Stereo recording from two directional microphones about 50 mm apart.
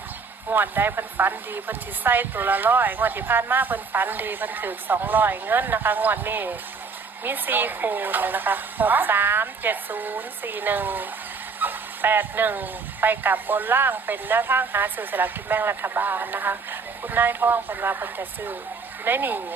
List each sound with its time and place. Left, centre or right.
0.5 s a woman's voice: right